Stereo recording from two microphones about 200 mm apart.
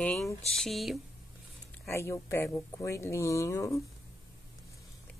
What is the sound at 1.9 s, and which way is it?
Speech, 15° left (ahead or behind).